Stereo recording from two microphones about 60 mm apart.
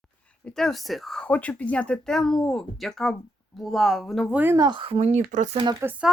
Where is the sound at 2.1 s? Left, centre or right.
Centre.